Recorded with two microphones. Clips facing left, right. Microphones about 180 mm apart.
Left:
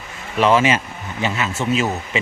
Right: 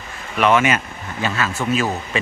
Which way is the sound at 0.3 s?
30° left (ahead or behind).